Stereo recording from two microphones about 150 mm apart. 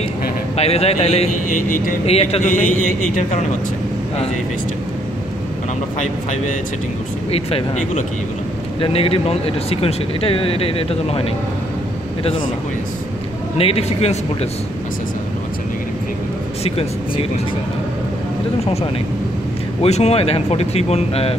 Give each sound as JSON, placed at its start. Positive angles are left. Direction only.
{"t": 0.6, "sound": "speech", "side_deg": 45}
{"t": 1.5, "sound": "a man's voice", "side_deg": 60}
{"t": 2.0, "sound": "a man's voice", "side_deg": 45}
{"t": 7.2, "sound": "speech", "side_deg": 40}
{"t": 13.6, "sound": "speech", "side_deg": 40}
{"t": 19.8, "sound": "speech", "side_deg": 45}